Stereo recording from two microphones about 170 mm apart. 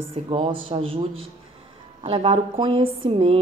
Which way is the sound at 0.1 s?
30° right (ahead or behind).